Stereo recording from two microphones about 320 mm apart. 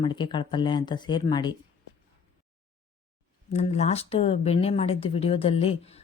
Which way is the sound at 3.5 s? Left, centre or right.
Centre.